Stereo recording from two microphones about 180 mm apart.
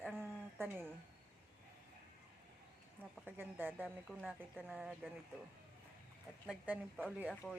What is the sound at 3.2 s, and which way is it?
Speech, 10° right (ahead or behind).